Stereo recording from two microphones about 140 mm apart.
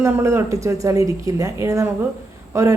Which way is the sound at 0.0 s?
20° right (ahead or behind).